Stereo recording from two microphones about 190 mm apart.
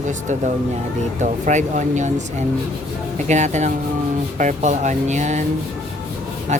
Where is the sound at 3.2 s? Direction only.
40° right (ahead or behind).